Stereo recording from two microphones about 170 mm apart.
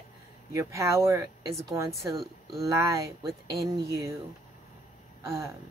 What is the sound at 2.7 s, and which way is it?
Speech, 20° right (ahead or behind).